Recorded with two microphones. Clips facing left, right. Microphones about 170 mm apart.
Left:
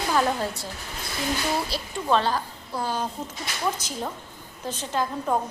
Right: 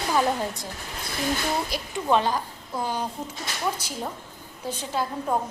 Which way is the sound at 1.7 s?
15° right (ahead or behind).